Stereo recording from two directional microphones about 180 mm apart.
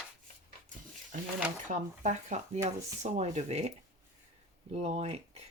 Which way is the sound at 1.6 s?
40° right (ahead or behind).